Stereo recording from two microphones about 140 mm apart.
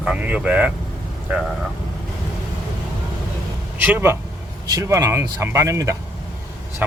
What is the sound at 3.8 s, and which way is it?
Speech, 15° right (ahead or behind).